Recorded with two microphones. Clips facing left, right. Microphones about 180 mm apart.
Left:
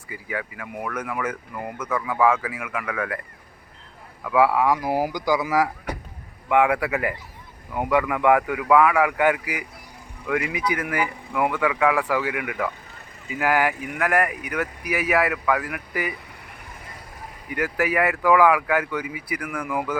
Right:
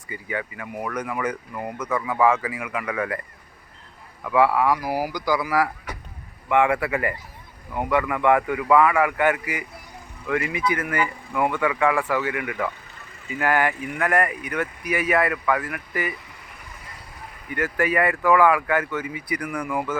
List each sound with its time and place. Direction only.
0.1 s speech: 5° left (ahead or behind)
4.2 s speech: 5° left (ahead or behind)
17.5 s speech: 10° left (ahead or behind)